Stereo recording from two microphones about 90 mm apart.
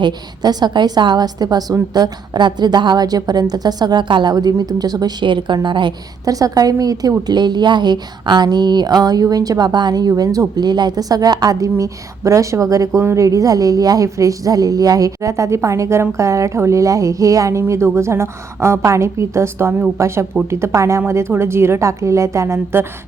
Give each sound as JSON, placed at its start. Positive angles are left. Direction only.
{"t": 0.0, "sound": "a woman's voice", "side_deg": -55}
{"t": 5.2, "sound": "a woman's voice", "side_deg": -60}
{"t": 6.2, "sound": "a woman's voice", "side_deg": -40}